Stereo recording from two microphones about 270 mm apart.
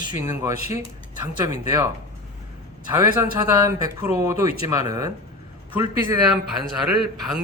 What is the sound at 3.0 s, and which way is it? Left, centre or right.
Speech, centre.